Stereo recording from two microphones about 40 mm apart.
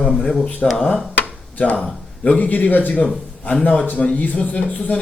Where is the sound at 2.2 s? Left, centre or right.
Left.